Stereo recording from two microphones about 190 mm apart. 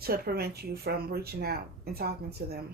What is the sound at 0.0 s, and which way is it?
Speech, 55° right (ahead or behind).